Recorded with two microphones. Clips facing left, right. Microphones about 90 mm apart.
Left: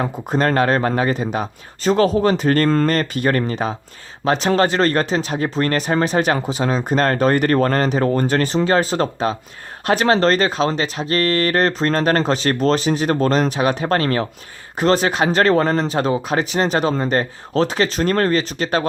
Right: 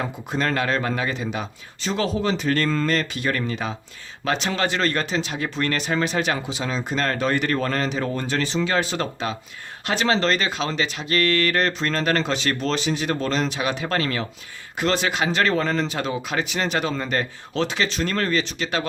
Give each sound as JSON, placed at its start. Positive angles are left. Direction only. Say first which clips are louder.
{"t": 0.0, "sound": "speech", "louder": "left 6 dB", "side_deg": 45}